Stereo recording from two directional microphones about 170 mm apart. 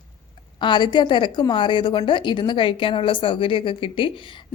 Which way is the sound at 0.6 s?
25° left (ahead or behind).